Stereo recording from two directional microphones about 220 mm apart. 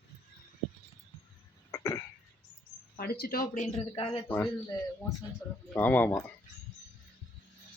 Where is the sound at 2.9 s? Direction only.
45° left (ahead or behind); by 4.2 s 25° left (ahead or behind).